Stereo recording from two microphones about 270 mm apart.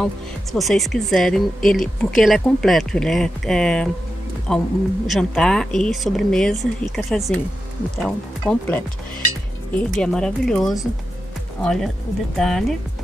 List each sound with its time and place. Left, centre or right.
0.0 s speech: centre